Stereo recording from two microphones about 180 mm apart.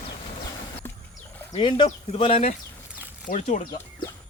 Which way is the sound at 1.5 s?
30° left (ahead or behind).